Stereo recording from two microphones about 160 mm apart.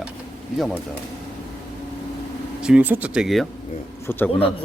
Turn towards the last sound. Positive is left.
turn(degrees=15)  # may be behind; listen again after turning